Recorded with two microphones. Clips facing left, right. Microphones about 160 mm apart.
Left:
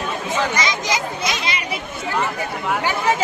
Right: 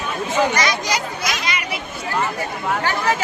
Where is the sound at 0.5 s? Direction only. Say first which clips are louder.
Right 1 dB; 25° left (ahead or behind).